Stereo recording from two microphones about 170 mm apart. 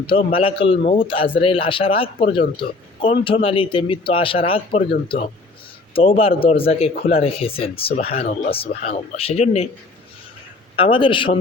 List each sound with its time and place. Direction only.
0.1 s speech: 35° left (ahead or behind)
8.2 s speech: 50° left (ahead or behind)
8.4 s speech: 35° left (ahead or behind)
10.8 s speech: 30° left (ahead or behind)